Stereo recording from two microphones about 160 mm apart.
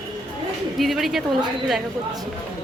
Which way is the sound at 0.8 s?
Centre (ahead or behind).